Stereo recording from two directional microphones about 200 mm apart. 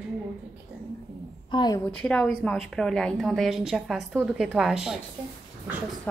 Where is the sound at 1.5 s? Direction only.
20° left (ahead or behind).